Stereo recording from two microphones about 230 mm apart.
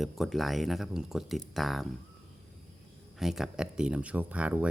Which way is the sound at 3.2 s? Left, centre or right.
Centre.